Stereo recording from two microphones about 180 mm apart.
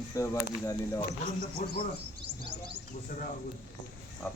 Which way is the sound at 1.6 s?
50° left (ahead or behind).